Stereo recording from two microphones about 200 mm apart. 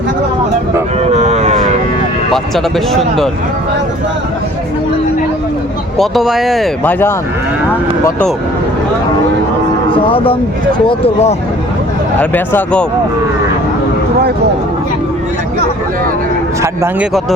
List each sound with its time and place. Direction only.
0.9 s a sound: 35° right (ahead or behind)
2.3 s speech: centre (ahead or behind)
6.0 s speech: centre (ahead or behind)
9.9 s speech: 25° left (ahead or behind)
12.2 s speech: 10° left (ahead or behind)
16.6 s speech: 15° right (ahead or behind)